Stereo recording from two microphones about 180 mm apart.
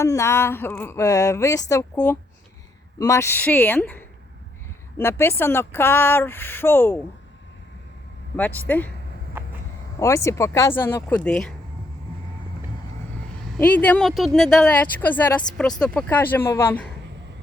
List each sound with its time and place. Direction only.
0.0 s speech: 15° left (ahead or behind)
8.4 s speech: 10° left (ahead or behind)
9.4 s a sound: 10° right (ahead or behind)
10.0 s speech: 15° left (ahead or behind)
13.6 s speech: 10° left (ahead or behind)